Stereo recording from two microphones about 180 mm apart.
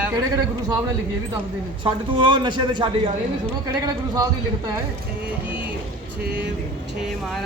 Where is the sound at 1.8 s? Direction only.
25° right (ahead or behind).